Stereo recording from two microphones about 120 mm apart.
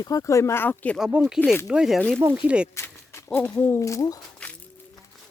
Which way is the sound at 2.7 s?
25° left (ahead or behind).